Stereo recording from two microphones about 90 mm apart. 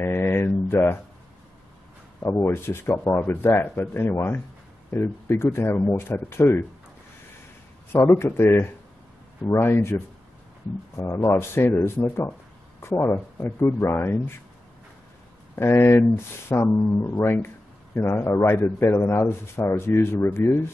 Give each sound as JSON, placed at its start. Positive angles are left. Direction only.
{"t": 0.0, "sound": "mantra", "side_deg": 30}
{"t": 2.2, "sound": "speech", "side_deg": 25}
{"t": 7.9, "sound": "a man's voice", "side_deg": 30}
{"t": 15.5, "sound": "speech", "side_deg": 30}